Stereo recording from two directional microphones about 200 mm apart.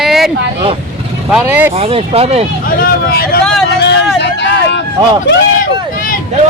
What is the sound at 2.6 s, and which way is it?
Speech, 50° left (ahead or behind).